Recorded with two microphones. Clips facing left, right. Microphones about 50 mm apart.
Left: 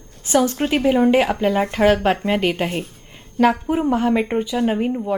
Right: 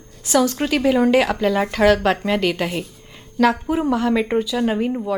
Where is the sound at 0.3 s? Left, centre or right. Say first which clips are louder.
Even; left.